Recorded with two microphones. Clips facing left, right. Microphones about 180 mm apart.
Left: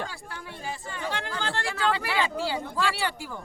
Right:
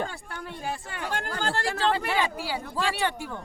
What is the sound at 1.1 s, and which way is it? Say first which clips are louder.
Speech: right 4 dB; 45° right (ahead or behind).